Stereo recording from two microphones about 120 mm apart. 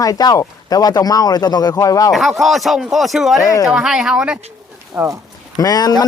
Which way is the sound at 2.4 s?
Centre (ahead or behind).